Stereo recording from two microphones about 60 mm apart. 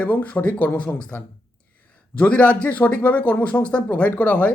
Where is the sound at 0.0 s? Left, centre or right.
Left.